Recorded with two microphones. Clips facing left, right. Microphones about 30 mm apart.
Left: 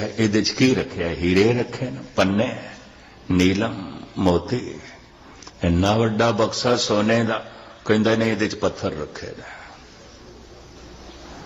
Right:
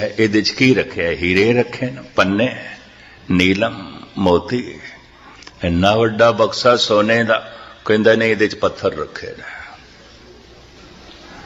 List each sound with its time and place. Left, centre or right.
0.2 s a man's voice: right
3.9 s a sound: right
4.4 s a man's voice: right
5.5 s speech: right
6.0 s a man's voice: right
6.5 s a man's voice: right